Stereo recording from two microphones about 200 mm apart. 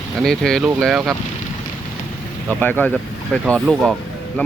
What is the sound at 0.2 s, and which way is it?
Speech, centre (ahead or behind).